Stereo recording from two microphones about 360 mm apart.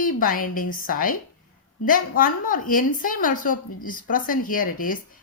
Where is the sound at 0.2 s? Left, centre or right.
Left.